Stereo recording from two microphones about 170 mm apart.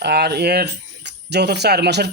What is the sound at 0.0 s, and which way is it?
Speech, 80° right.